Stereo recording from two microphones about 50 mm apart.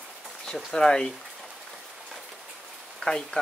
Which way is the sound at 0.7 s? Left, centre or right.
Centre.